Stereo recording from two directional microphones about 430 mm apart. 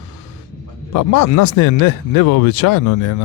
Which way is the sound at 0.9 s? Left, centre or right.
Left.